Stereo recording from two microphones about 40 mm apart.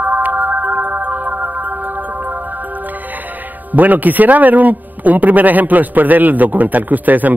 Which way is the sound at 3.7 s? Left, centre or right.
Right.